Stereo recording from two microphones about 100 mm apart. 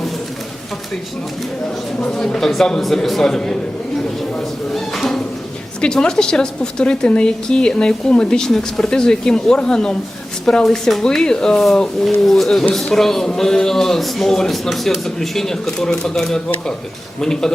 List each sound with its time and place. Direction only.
2.0 s a woman's voice: 5° left (ahead or behind)